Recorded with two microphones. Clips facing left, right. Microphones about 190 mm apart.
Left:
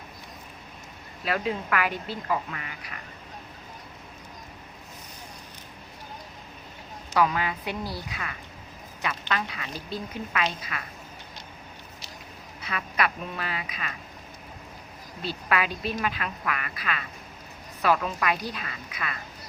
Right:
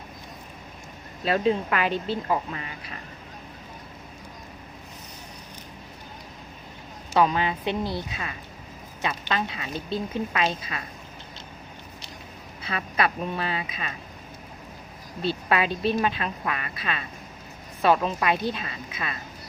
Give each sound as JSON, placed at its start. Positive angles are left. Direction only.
{"t": 1.2, "sound": "speech", "side_deg": -25}
{"t": 7.1, "sound": "speech", "side_deg": -25}
{"t": 12.6, "sound": "speech", "side_deg": -30}
{"t": 15.3, "sound": "speech", "side_deg": -30}